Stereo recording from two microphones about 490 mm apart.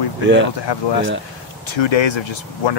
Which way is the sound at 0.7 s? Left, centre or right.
Left.